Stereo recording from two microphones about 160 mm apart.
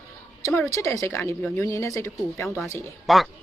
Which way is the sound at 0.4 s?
20° left (ahead or behind).